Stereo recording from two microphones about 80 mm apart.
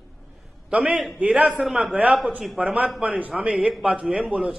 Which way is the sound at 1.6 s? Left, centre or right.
Centre.